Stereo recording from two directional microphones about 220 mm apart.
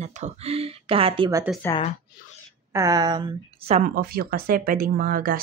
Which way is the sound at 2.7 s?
15° right (ahead or behind).